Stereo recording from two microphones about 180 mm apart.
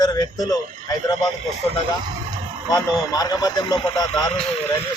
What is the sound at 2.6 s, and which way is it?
Speech, 20° left (ahead or behind).